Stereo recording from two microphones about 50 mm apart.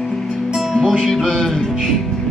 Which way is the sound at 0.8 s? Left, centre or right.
Centre.